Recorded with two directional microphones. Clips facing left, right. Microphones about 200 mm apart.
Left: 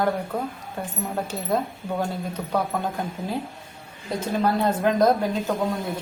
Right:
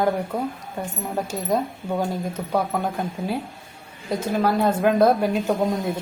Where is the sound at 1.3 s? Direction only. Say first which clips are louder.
Right 3 dB; 10° right (ahead or behind).